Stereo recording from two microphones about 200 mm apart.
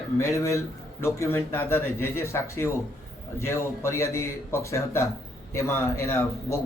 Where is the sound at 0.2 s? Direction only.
15° left (ahead or behind).